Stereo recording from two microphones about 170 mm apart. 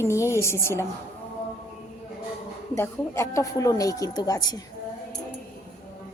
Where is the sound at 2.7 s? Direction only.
15° left (ahead or behind).